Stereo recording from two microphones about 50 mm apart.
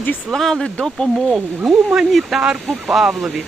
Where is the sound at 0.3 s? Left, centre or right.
Centre.